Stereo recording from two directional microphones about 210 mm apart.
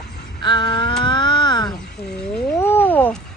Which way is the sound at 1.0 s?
20° left (ahead or behind).